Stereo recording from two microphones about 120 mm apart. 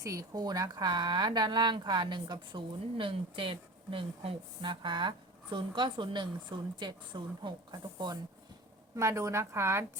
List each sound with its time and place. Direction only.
0.0 s speech: 30° right (ahead or behind)
9.0 s a woman's voice: 25° right (ahead or behind)